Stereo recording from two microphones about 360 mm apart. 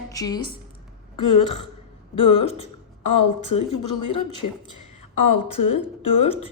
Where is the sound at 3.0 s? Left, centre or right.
Left.